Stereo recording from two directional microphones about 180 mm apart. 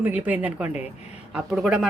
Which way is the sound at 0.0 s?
10° right (ahead or behind).